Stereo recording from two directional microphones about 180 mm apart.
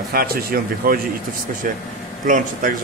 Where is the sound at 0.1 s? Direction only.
55° right (ahead or behind).